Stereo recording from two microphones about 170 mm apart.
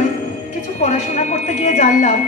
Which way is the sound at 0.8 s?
40° left (ahead or behind).